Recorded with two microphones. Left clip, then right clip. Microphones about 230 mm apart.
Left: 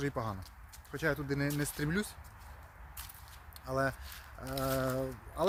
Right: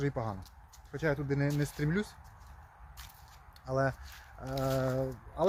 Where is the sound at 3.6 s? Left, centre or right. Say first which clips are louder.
Right 2 dB; centre.